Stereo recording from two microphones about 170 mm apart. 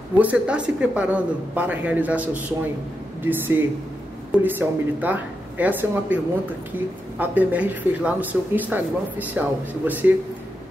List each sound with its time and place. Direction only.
0.2 s a woman's voice: 10° right (ahead or behind)